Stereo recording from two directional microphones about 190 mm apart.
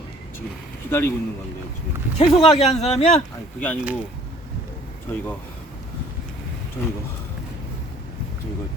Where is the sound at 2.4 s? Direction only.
35° left (ahead or behind).